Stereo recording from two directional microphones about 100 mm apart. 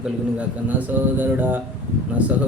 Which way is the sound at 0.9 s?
15° right (ahead or behind).